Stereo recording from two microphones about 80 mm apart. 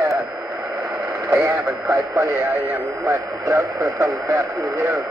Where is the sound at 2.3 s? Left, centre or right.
Right.